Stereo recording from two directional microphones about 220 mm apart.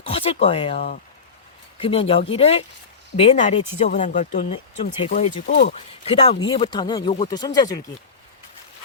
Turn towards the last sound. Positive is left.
turn(degrees=15)  # may be behind; listen again after turning